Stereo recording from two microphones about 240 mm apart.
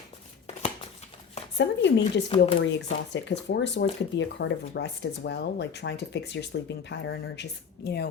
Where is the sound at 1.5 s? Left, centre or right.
Left.